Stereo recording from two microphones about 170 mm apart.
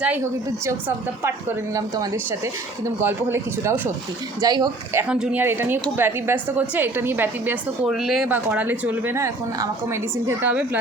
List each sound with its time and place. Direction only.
0.6 s a woman's voice: 15° right (ahead or behind)
4.9 s a woman's voice: 5° right (ahead or behind)